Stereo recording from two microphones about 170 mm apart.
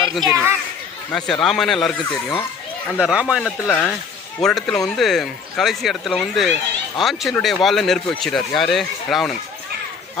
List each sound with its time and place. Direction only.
0.3 s speech: 15° right (ahead or behind)
1.1 s speech: centre (ahead or behind)
3.4 s speech: 5° left (ahead or behind)